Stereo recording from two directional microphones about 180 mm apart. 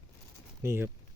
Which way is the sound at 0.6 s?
15° right (ahead or behind).